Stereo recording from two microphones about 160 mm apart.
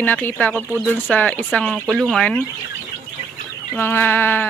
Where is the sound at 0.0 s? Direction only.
10° left (ahead or behind).